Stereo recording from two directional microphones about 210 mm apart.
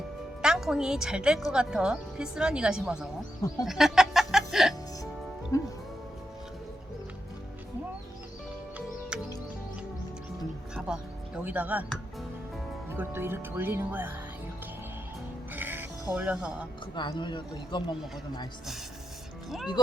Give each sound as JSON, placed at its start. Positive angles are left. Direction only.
{"t": 0.4, "sound": "a woman's voice", "side_deg": 0}
{"t": 3.7, "sound": "music", "side_deg": 0}
{"t": 5.5, "sound": "music", "side_deg": 15}
{"t": 10.8, "sound": "music", "side_deg": -5}
{"t": 11.4, "sound": "speech", "side_deg": -5}
{"t": 15.5, "sound": "music", "side_deg": -10}
{"t": 16.9, "sound": "speech", "side_deg": 20}